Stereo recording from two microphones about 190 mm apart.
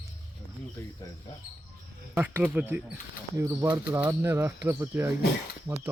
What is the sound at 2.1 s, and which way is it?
Speech, 10° right (ahead or behind).